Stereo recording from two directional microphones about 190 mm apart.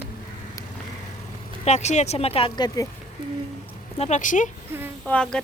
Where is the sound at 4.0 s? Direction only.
40° left (ahead or behind).